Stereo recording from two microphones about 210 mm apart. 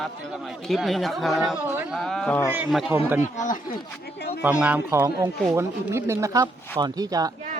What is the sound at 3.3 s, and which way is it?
Speech, 40° left (ahead or behind).